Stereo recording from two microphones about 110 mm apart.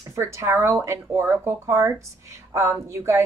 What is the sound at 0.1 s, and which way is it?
A woman's voice, 25° right (ahead or behind).